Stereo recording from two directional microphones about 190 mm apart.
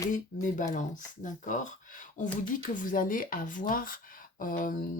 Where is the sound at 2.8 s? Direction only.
45° left (ahead or behind).